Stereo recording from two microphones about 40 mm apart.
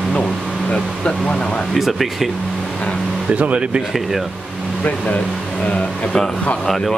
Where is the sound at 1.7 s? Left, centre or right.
Centre.